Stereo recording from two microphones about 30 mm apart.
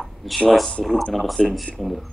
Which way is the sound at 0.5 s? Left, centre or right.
Centre.